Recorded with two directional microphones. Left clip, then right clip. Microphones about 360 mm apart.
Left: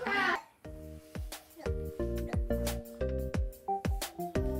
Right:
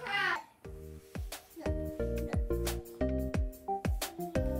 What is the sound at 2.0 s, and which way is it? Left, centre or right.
Music, centre.